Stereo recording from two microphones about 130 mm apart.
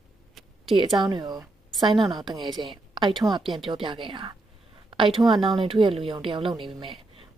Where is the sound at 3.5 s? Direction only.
40° right (ahead or behind).